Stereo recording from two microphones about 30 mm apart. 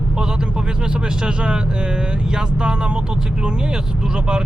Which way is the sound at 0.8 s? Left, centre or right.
Right.